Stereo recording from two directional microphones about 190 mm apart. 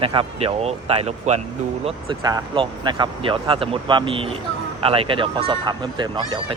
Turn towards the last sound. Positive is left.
turn(degrees=-25)  # may be behind; listen again after turning